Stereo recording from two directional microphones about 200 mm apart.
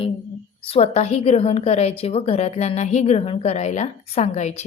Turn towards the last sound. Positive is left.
turn(degrees=35)  # may be behind; listen again after turning